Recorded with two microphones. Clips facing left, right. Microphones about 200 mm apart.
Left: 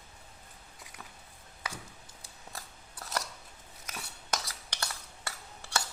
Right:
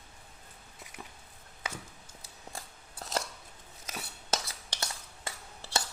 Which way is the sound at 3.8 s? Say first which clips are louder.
Right 2 dB; 20° right (ahead or behind).